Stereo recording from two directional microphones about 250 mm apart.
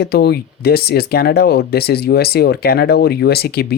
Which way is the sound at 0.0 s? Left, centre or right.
Left.